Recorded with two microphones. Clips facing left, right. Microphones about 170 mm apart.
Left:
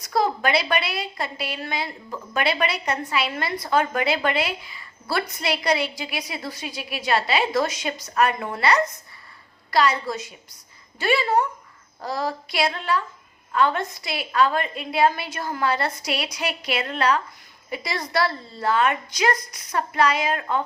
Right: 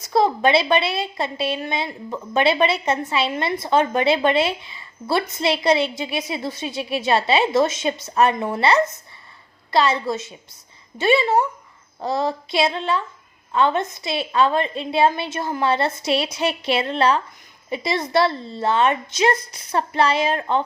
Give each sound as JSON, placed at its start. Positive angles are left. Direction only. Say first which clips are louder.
{"t": 0.0, "sound": "a woman's voice", "louder": "right 4 dB", "side_deg": -25}